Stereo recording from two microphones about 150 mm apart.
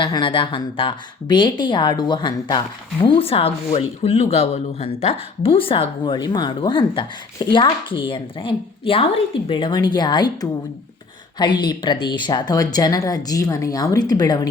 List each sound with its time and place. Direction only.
0.0 s a woman's voice: 35° left (ahead or behind)